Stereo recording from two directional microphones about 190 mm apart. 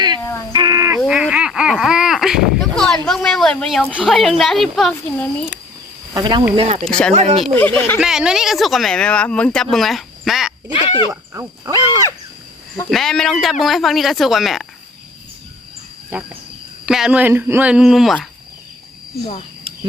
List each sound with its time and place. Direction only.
0.2 s a sound: 15° left (ahead or behind)
0.5 s a sound: 20° right (ahead or behind)
1.0 s speech: 5° right (ahead or behind)
6.1 s speech: 25° right (ahead or behind)
6.6 s speech: 35° right (ahead or behind)
6.8 s speech: 5° left (ahead or behind)
7.1 s speech: 35° right (ahead or behind)
7.5 s speech: 10° left (ahead or behind)
7.9 s speech: 5° right (ahead or behind)
10.7 s speech: 25° left (ahead or behind)
11.3 s speech: 15° right (ahead or behind)
12.9 s speech: centre (ahead or behind)
16.0 s speech: 10° right (ahead or behind)
19.7 s a sound: 30° right (ahead or behind)